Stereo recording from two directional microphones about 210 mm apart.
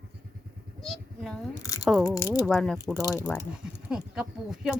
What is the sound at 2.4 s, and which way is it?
Speech, centre (ahead or behind).